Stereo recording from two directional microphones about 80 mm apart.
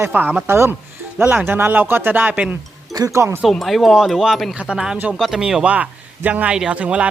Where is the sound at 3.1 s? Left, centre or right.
Right.